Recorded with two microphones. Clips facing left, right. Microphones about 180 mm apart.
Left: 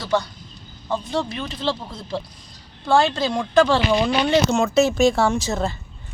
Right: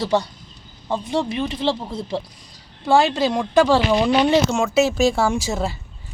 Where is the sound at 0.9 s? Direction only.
15° right (ahead or behind).